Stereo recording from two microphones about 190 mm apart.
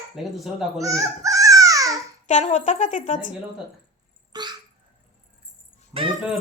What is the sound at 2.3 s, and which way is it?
Speech, 40° left (ahead or behind).